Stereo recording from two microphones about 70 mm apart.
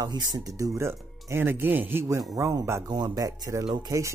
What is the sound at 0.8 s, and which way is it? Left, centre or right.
Speech, right.